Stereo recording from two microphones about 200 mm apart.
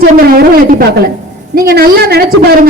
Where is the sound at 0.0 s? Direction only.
45° right (ahead or behind).